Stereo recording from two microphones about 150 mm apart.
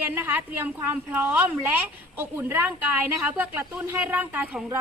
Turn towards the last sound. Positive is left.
turn(degrees=-10)  # may be behind; listen again after turning